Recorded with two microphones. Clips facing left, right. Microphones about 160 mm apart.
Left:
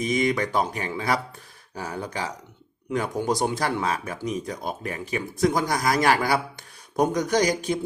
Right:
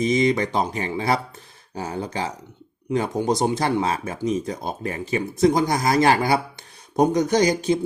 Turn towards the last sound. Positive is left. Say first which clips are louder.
# right 3 dB
turn(degrees=-25)  # may be behind; listen again after turning